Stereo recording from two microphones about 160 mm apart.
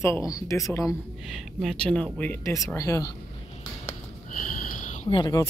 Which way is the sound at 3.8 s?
55° left (ahead or behind).